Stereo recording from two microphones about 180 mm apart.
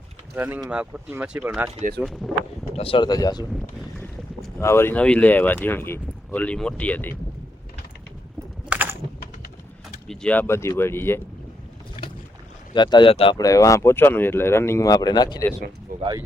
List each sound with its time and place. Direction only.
0.3 s speech: 10° right (ahead or behind)
2.7 s speech: 30° left (ahead or behind)
3.5 s boat: centre (ahead or behind)
4.0 s speech: 10° left (ahead or behind)
8.7 s a sound: 10° right (ahead or behind)
10.1 s speech: 5° left (ahead or behind)
12.7 s speech: 25° left (ahead or behind)
13.3 s speech: 20° left (ahead or behind)
15.9 s speech: 50° right (ahead or behind)